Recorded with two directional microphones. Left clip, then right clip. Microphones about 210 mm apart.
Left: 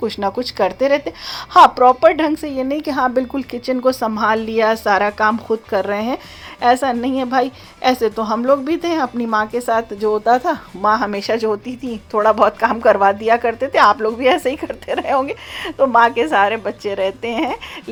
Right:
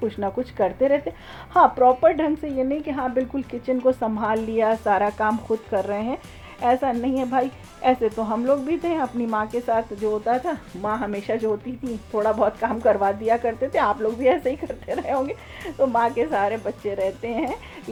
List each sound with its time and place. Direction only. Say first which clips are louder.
0.0 s speech: left 6 dB; 20° left (ahead or behind)
2.8 s a woman's voice: left 7 dB; 25° left (ahead or behind)